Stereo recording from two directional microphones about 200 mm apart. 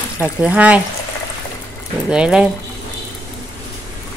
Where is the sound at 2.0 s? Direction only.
5° right (ahead or behind).